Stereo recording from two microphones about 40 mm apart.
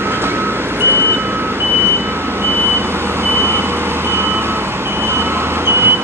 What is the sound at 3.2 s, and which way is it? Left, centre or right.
Vehicle, right.